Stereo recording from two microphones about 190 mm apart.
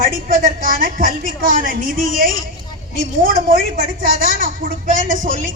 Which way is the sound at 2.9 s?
50° right (ahead or behind).